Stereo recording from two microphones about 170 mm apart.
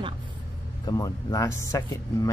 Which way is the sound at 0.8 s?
20° left (ahead or behind).